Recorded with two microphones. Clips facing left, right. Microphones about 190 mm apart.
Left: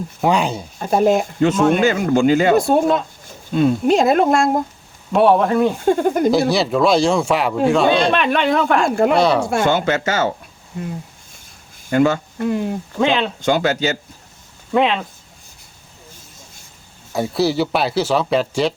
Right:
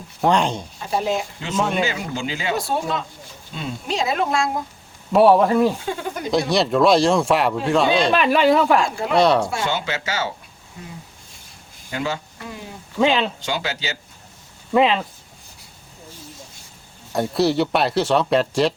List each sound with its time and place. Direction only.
0.2 s speech: 5° left (ahead or behind)
0.8 s speech: 50° left (ahead or behind)
5.1 s speech: centre (ahead or behind)
5.8 s speech: 50° left (ahead or behind)
6.5 s speech: centre (ahead or behind)
8.8 s speech: 50° left (ahead or behind)
9.1 s speech: centre (ahead or behind)
9.5 s speech: 50° left (ahead or behind)
11.9 s speech: 50° left (ahead or behind)
13.0 s speech: centre (ahead or behind)
13.4 s speech: 50° left (ahead or behind)
14.7 s speech: centre (ahead or behind)
17.1 s speech: centre (ahead or behind)